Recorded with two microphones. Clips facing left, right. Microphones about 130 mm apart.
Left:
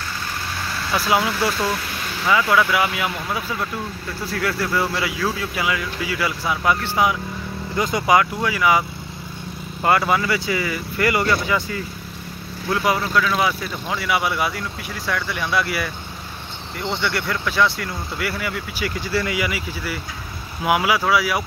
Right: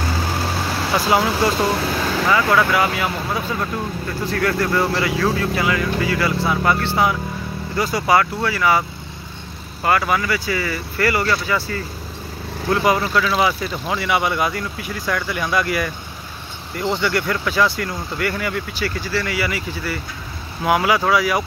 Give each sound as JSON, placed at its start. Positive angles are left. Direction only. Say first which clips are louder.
{"t": 1.3, "sound": "speech", "louder": "right 4 dB", "side_deg": -40}
{"t": 1.9, "sound": "vehicle", "louder": "right 9 dB", "side_deg": -90}
{"t": 2.3, "sound": "speech", "louder": "even", "side_deg": 10}
{"t": 4.3, "sound": "speech", "louder": "right 3 dB", "side_deg": 5}
{"t": 9.8, "sound": "speech", "louder": "even", "side_deg": 20}
{"t": 12.7, "sound": "speech", "louder": "right 2 dB", "side_deg": 0}
{"t": 18.9, "sound": "speech", "louder": "left 1 dB", "side_deg": 20}